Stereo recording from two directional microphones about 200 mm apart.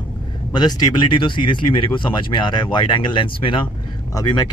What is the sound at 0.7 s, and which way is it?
Speech, 25° left (ahead or behind).